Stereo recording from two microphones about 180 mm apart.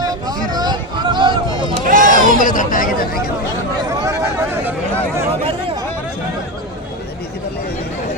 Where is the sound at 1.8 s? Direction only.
45° right (ahead or behind).